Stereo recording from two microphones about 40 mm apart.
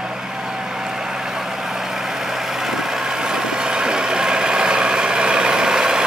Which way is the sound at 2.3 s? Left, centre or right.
Centre.